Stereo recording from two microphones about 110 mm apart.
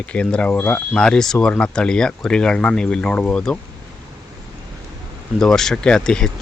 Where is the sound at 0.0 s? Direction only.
10° left (ahead or behind).